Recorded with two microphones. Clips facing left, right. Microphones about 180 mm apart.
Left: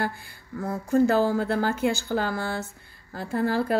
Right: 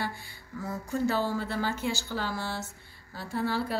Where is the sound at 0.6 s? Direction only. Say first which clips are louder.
Left 9 dB; 50° left (ahead or behind).